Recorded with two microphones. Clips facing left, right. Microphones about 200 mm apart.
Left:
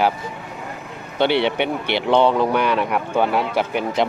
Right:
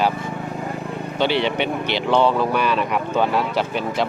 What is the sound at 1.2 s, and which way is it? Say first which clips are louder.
Speech: left 2 dB; 65° left (ahead or behind).